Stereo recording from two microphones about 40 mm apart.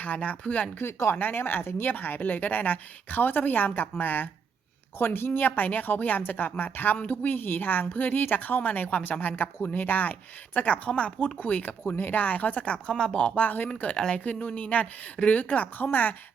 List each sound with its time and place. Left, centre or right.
0.0 s speech: left
0.8 s speech: left
1.2 s speech: left
4.9 s a woman's voice: left
11.3 s speech: left
11.8 s speech: left
13.3 s speech: left
14.3 s speech: left
15.8 s speech: left